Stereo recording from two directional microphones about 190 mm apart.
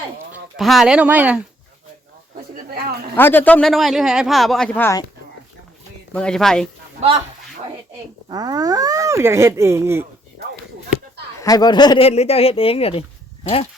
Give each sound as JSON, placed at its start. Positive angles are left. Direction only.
{"t": 0.5, "sound": "speech", "side_deg": 0}
{"t": 3.2, "sound": "speech", "side_deg": 10}
{"t": 6.1, "sound": "speech", "side_deg": 5}
{"t": 8.3, "sound": "speech", "side_deg": -20}
{"t": 11.3, "sound": "speech", "side_deg": 20}